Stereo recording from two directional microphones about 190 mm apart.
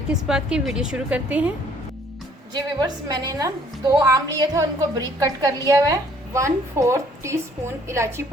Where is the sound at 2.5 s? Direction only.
20° right (ahead or behind).